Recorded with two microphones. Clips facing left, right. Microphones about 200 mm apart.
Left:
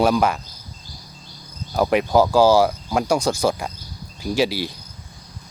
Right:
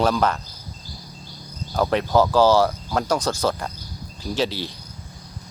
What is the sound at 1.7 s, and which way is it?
Cricket, 10° left (ahead or behind).